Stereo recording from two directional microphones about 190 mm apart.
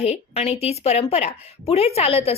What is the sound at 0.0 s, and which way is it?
A woman's voice, 35° left (ahead or behind).